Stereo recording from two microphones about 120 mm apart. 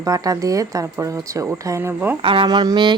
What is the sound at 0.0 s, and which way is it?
Speech, 30° right (ahead or behind).